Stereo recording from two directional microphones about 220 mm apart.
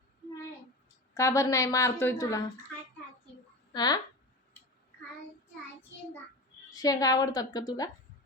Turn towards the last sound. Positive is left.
turn(degrees=15)  # may be behind; listen again after turning